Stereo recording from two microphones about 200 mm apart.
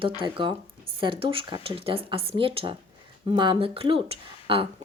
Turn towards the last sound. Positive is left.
turn(degrees=-25)  # may be behind; listen again after turning